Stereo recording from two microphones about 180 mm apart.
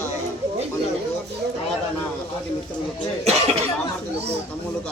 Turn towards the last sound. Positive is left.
turn(degrees=-35)  # may be behind; listen again after turning